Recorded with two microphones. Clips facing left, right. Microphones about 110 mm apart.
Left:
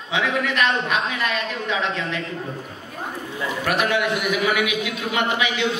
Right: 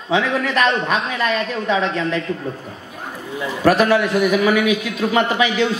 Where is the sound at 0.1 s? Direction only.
35° right (ahead or behind).